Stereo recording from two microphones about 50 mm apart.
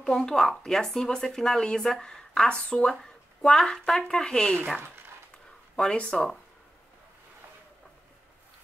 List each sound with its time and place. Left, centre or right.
0.0 s speech: centre
5.8 s speech: centre